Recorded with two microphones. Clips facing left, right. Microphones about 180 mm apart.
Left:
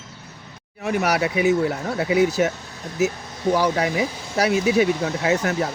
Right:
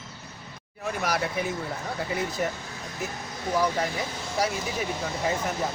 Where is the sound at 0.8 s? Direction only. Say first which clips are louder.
Left 7 dB; 75° left (ahead or behind).